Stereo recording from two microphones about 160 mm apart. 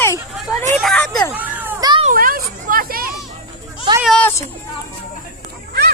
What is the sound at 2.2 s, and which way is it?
Hubbub, 60° right (ahead or behind).